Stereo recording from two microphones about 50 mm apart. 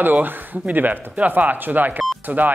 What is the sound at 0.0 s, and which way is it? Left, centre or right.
Speech, right.